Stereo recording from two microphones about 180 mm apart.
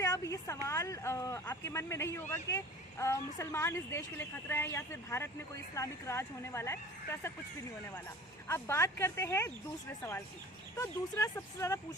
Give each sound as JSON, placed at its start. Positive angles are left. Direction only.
{"t": 0.0, "sound": "a woman's voice", "side_deg": 20}
{"t": 8.4, "sound": "a woman's voice", "side_deg": 15}